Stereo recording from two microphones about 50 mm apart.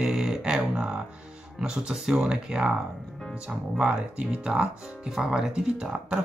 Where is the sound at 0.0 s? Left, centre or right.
Centre.